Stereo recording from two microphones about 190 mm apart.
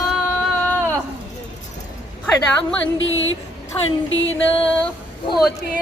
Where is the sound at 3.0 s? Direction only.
85° left.